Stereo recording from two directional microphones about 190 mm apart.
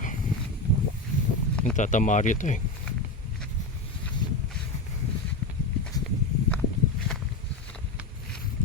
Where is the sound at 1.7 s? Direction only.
40° left (ahead or behind).